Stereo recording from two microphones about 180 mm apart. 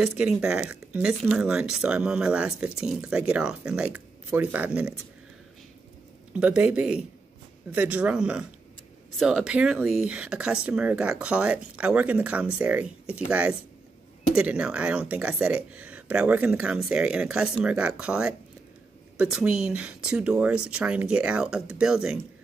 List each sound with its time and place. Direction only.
0.0 s speech: 5° right (ahead or behind)
6.3 s speech: 5° right (ahead or behind)